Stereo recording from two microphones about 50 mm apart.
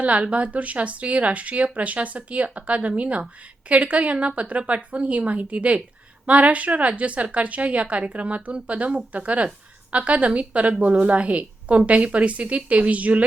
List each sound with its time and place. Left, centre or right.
0.0 s speech: right